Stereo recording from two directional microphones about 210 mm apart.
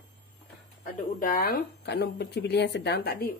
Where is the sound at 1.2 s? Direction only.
40° left (ahead or behind).